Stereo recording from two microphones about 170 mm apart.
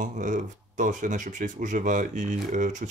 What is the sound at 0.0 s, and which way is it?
Speech, 50° right (ahead or behind).